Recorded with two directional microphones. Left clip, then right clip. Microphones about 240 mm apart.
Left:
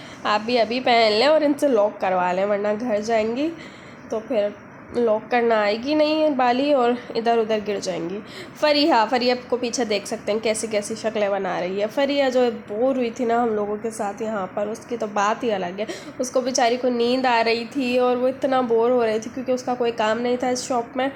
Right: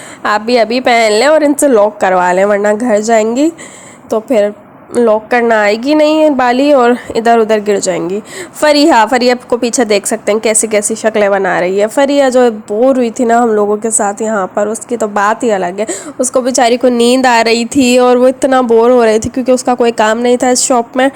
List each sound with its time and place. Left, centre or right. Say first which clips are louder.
0.2 s a woman's voice: right 10 dB; right
4.9 s a woman's voice: right 11 dB; right